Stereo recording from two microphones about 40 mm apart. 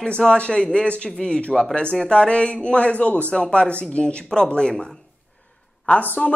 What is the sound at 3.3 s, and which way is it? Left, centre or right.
Speech, left.